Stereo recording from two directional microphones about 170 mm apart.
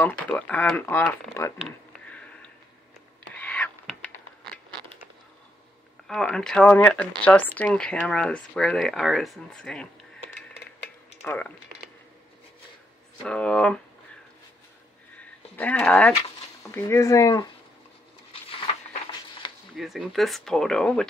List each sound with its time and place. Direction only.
0.0 s speech: 10° left (ahead or behind)
3.3 s a sound: 10° left (ahead or behind)
6.0 s speech: 5° left (ahead or behind)
11.2 s speech: 10° left (ahead or behind)
13.2 s speech: 5° left (ahead or behind)
15.1 s a sound: 10° left (ahead or behind)
16.7 s speech: 20° left (ahead or behind)
19.4 s a sound: 25° left (ahead or behind)
19.8 s speech: centre (ahead or behind)